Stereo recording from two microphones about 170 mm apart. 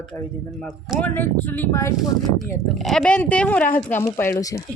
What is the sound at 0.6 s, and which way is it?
Speech, 5° left (ahead or behind).